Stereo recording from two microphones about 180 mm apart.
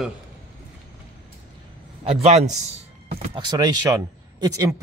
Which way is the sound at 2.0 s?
35° right (ahead or behind).